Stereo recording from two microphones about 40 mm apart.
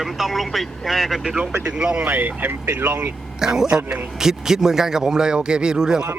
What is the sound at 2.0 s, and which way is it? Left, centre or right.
Speech, right.